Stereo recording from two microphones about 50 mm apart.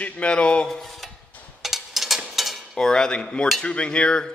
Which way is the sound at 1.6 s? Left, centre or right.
Centre.